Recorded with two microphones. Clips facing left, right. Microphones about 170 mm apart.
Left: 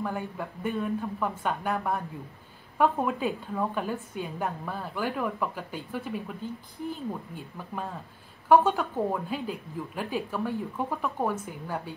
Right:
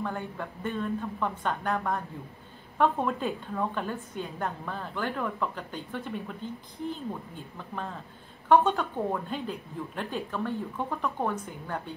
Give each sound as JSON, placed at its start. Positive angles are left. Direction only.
{"t": 0.0, "sound": "a woman's voice", "side_deg": 10}
{"t": 7.5, "sound": "a woman's voice", "side_deg": 10}